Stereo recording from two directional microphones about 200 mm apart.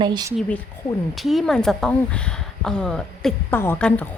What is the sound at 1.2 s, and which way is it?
Speech, centre (ahead or behind).